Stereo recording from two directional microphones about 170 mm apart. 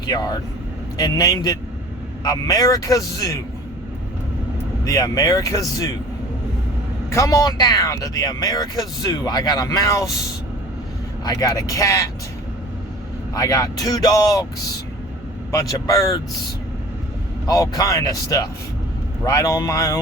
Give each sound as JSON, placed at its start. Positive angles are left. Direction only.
{"t": 0.0, "sound": "speech", "side_deg": 25}
{"t": 4.9, "sound": "speech", "side_deg": 20}
{"t": 7.1, "sound": "speech", "side_deg": 20}
{"t": 11.3, "sound": "speech", "side_deg": 20}
{"t": 13.3, "sound": "speech", "side_deg": 20}
{"t": 15.5, "sound": "speech", "side_deg": 20}
{"t": 17.4, "sound": "speech", "side_deg": 20}